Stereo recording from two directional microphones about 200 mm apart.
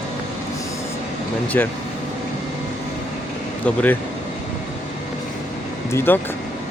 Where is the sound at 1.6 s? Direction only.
10° left (ahead or behind).